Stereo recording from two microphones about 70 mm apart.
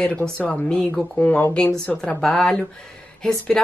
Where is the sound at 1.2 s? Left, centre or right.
Left.